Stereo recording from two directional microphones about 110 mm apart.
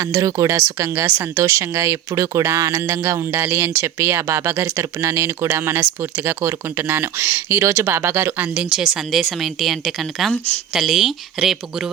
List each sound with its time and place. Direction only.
0.0 s speech: 30° right (ahead or behind)
8.7 s speech: 5° right (ahead or behind)